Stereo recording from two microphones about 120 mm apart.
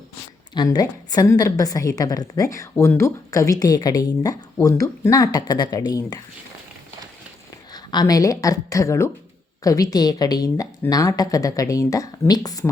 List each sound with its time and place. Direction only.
0.5 s a woman's voice: 35° left (ahead or behind)
7.7 s a woman's voice: 35° left (ahead or behind)